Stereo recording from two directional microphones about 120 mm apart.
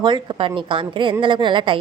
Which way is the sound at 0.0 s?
40° right (ahead or behind).